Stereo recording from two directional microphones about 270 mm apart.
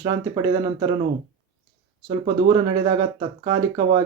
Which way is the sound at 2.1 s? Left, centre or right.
Centre.